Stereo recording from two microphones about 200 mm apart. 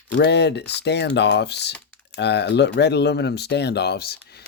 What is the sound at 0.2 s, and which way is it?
Speech, 55° left (ahead or behind).